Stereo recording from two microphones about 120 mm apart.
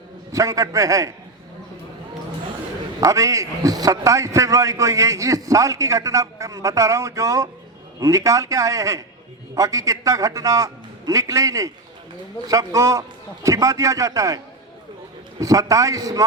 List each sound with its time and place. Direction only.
0.3 s a man's voice: 25° right (ahead or behind)
3.0 s a man's voice: 25° right (ahead or behind)